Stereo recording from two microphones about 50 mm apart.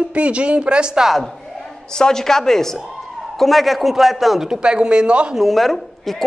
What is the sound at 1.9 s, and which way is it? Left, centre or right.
A man's voice, centre.